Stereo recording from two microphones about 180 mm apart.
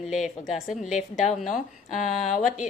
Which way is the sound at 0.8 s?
45° left (ahead or behind).